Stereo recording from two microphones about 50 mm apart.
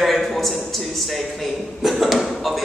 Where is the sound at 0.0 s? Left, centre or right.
Centre.